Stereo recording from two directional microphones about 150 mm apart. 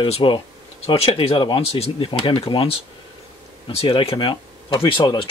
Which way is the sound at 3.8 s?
35° left (ahead or behind).